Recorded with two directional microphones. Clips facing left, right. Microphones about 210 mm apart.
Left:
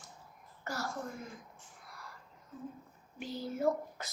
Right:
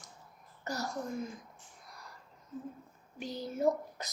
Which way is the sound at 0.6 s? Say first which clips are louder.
Right 2 dB; 20° right (ahead or behind).